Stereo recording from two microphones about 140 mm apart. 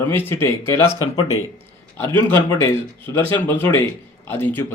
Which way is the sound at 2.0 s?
15° left (ahead or behind).